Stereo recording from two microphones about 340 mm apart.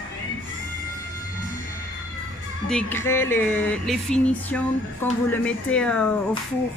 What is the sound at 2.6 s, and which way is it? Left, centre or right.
Speech, centre.